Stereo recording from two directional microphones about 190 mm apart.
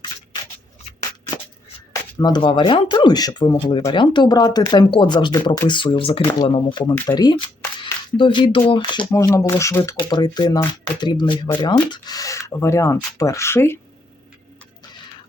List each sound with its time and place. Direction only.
1.9 s speech: 20° left (ahead or behind)